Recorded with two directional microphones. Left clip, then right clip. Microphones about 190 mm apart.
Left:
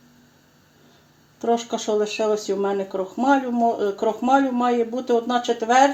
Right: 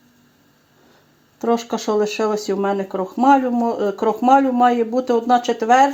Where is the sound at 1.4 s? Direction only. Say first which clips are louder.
Right 2 dB; 40° right (ahead or behind).